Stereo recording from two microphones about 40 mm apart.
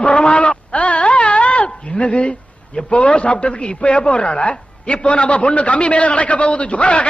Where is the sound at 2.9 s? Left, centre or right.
Left.